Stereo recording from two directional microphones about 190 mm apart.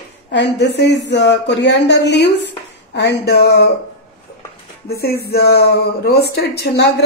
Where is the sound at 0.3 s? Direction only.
65° left (ahead or behind).